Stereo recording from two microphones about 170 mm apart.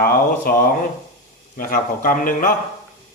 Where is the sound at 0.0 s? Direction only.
60° left (ahead or behind).